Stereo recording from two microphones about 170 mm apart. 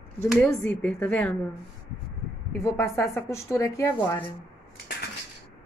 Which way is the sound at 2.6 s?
15° left (ahead or behind).